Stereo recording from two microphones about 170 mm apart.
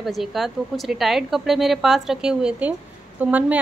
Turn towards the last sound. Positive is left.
turn(degrees=-10)  # may be behind; listen again after turning